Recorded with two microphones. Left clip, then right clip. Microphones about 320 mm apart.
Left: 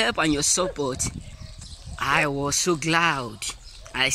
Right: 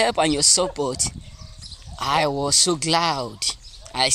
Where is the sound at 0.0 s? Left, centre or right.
Centre.